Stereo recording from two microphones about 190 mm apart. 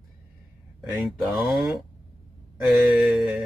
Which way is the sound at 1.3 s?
Centre (ahead or behind).